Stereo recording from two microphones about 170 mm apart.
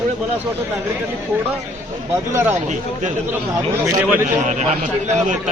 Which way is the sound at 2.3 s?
15° right (ahead or behind).